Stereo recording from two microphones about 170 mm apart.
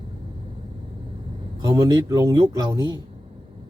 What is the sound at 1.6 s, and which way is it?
Speech, 20° right (ahead or behind).